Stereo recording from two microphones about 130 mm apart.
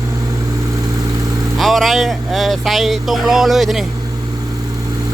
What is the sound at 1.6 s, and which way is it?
Speech, centre (ahead or behind).